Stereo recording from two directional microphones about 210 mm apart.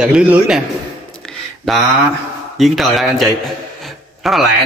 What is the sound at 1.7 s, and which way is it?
A man's voice, centre (ahead or behind).